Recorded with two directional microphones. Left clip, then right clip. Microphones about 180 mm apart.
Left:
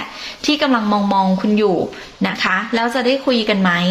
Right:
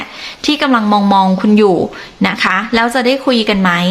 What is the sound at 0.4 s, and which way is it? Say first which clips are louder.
Speech: right 4 dB; 10° right (ahead or behind).